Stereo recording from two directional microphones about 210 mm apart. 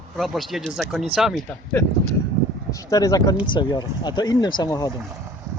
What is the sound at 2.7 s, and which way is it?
Speech, 15° left (ahead or behind).